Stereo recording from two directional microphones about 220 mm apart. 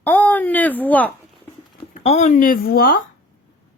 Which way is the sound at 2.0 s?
30° left (ahead or behind).